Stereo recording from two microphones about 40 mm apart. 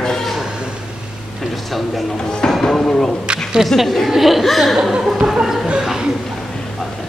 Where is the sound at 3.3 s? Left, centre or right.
Right.